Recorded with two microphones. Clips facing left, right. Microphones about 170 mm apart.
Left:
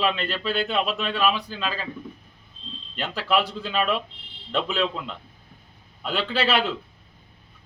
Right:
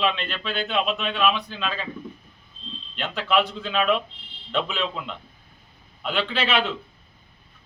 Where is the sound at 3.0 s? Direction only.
5° left (ahead or behind).